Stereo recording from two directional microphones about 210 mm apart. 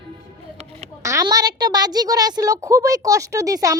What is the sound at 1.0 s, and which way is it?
A woman's voice, 15° right (ahead or behind).